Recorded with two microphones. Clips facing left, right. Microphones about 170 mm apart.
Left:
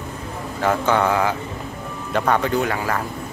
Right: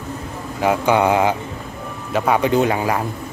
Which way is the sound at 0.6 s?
15° right (ahead or behind).